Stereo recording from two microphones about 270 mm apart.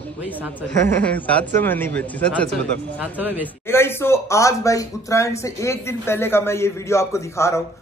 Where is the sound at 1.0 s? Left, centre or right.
Centre.